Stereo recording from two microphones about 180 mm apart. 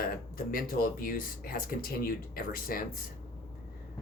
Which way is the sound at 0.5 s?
50° left (ahead or behind).